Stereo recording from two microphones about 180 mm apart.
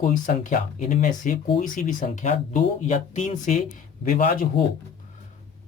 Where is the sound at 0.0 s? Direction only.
50° left (ahead or behind).